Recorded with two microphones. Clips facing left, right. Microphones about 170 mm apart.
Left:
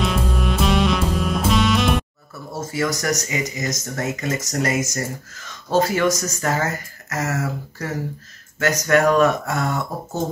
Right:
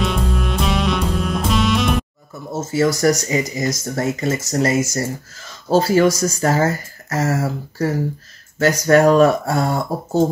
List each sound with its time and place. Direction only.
0.0 s music: centre (ahead or behind)
2.5 s speech: 25° right (ahead or behind)